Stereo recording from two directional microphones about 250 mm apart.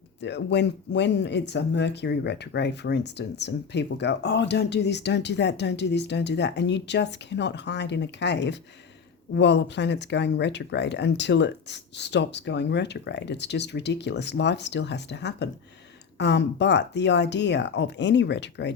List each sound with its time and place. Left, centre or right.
0.2 s speech: left